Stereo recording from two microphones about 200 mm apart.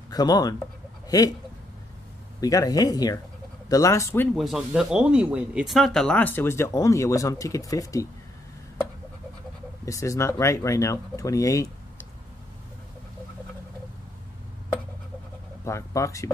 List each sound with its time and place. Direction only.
0.1 s speech: 20° left (ahead or behind)
1.0 s a sound: 20° left (ahead or behind)
2.4 s speech: 20° left (ahead or behind)
4.4 s speech: centre (ahead or behind); by 8.1 s 15° left (ahead or behind)
9.8 s speech: 15° left (ahead or behind)
15.6 s speech: 15° left (ahead or behind)